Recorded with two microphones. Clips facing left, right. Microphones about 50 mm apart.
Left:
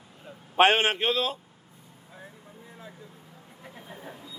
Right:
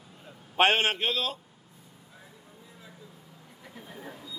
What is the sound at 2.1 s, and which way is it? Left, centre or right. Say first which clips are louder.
Vehicle: left 6 dB; left.